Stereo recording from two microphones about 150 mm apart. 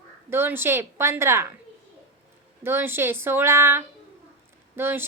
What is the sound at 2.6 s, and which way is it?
Speech, 15° right (ahead or behind).